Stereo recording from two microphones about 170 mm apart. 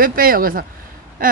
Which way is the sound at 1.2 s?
55° right (ahead or behind).